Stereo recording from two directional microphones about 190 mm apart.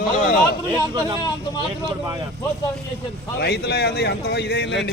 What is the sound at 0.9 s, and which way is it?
Speech, 20° right (ahead or behind).